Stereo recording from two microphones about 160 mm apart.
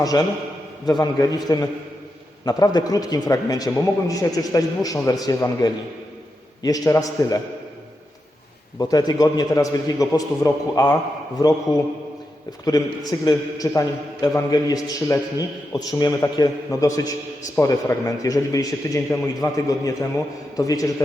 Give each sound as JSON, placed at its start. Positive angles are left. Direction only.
{"t": 0.1, "sound": "a man's voice", "side_deg": 25}
{"t": 2.4, "sound": "a man's voice", "side_deg": 25}
{"t": 8.8, "sound": "a man's voice", "side_deg": 25}